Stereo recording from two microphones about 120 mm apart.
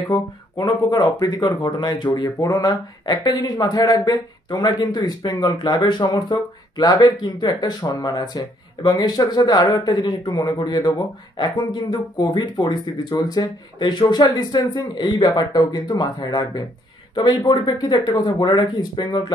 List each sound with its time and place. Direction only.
0.1 s speech: 30° left (ahead or behind)